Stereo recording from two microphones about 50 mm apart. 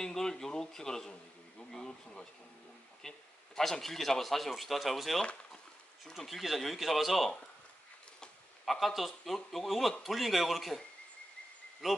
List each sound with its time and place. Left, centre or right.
0.0 s a man's voice: centre
8.6 s a man's voice: centre
11.8 s a man's voice: centre